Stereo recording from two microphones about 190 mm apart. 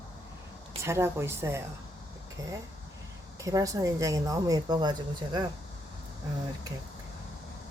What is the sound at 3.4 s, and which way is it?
Speech, 15° right (ahead or behind).